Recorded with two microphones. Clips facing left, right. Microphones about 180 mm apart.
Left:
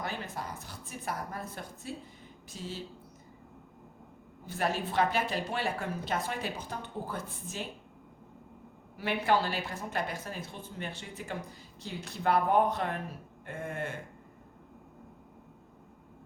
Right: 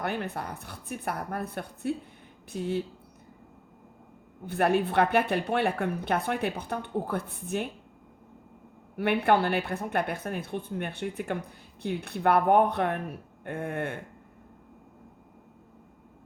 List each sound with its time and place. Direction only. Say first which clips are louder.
0.0 s speech: right 6 dB; 60° right (ahead or behind)
4.4 s speech: right 8 dB; 60° right (ahead or behind)
9.0 s speech: right 5 dB; 60° right (ahead or behind)